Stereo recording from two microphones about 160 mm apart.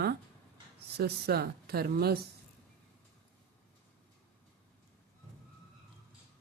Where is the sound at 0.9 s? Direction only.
80° right.